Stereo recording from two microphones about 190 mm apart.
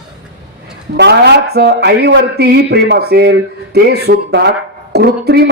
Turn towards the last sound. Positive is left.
turn(degrees=-55)  # may be behind; listen again after turning